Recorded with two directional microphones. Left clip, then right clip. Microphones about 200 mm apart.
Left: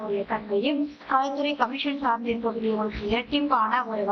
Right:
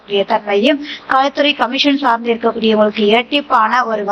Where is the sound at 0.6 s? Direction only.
30° right (ahead or behind).